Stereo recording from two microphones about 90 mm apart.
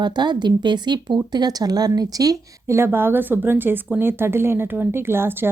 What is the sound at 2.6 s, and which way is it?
Speech, 30° right (ahead or behind).